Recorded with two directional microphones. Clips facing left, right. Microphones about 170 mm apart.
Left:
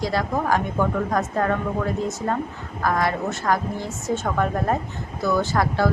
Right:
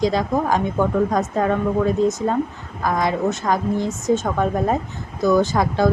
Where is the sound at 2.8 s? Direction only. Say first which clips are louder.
Right 3 dB; 20° right (ahead or behind).